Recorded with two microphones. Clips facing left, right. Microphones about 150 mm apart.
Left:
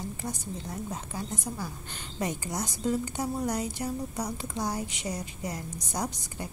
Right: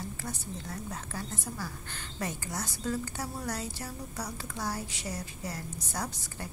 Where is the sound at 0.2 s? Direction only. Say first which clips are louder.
Left 3 dB; 20° left (ahead or behind).